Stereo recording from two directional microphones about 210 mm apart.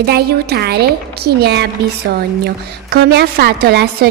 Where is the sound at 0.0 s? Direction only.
50° right (ahead or behind).